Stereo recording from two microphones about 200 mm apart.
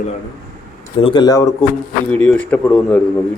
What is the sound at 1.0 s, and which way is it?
Speech, 20° left (ahead or behind).